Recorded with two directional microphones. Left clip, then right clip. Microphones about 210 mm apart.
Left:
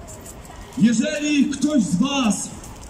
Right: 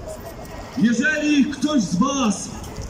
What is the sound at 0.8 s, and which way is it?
A man's voice, 20° left (ahead or behind).